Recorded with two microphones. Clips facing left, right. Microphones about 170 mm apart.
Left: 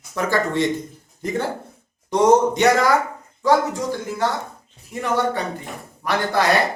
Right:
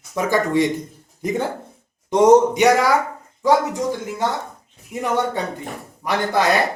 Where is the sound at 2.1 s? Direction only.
20° right (ahead or behind).